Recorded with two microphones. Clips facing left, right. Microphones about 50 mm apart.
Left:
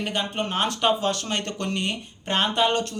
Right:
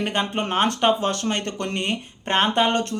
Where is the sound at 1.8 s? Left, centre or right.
Right.